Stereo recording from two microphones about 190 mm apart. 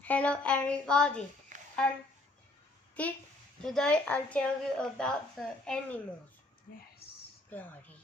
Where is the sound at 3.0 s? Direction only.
5° left (ahead or behind).